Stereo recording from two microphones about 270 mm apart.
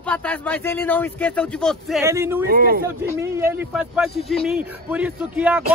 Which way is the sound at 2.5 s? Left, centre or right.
Right.